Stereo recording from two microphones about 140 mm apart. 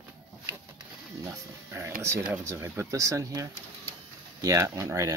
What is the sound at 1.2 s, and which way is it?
Speech, 15° right (ahead or behind).